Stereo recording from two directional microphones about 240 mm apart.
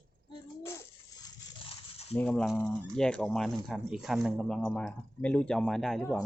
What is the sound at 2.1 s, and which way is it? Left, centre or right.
Speech, centre.